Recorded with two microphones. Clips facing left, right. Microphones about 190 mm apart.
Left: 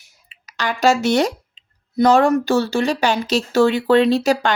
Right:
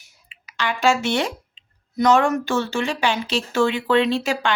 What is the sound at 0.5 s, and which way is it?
Speech, 40° left (ahead or behind).